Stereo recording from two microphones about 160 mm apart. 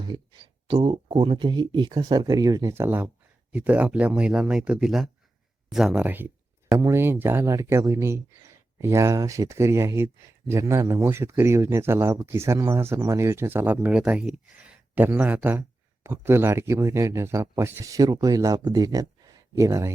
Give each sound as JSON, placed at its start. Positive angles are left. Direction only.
{"t": 0.1, "sound": "speech", "side_deg": -30}